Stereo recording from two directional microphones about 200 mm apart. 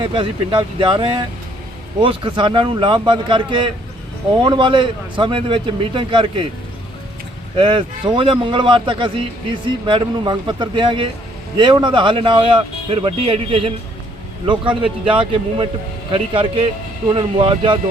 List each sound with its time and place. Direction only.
0.0 s speech: 25° right (ahead or behind)
7.5 s speech: 25° right (ahead or behind)